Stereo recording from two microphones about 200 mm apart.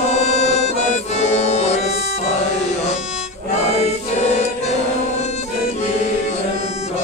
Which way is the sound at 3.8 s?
35° left (ahead or behind).